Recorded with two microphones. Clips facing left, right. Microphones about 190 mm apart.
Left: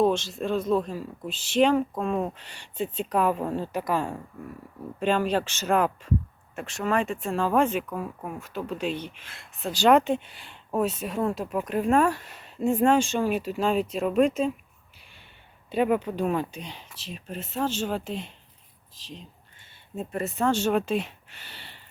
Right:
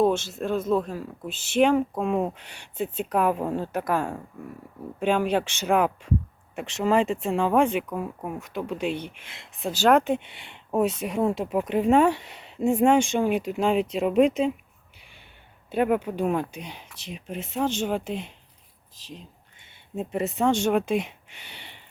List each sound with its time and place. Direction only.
0.0 s speech: 5° right (ahead or behind)
6.6 s speech: 20° right (ahead or behind)
9.8 s speech: centre (ahead or behind)
11.0 s speech: 15° right (ahead or behind)
15.8 s speech: 10° right (ahead or behind)
20.0 s speech: 20° right (ahead or behind)